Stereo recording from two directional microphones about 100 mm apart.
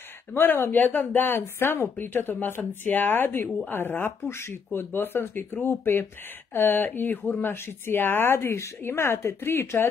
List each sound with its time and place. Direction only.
0.3 s speech: 20° left (ahead or behind)